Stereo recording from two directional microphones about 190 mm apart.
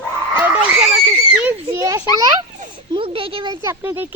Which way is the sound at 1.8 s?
15° right (ahead or behind).